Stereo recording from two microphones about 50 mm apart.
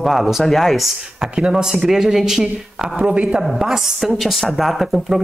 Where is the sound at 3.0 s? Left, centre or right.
Right.